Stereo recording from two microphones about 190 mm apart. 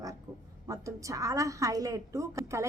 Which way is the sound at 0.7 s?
15° right (ahead or behind).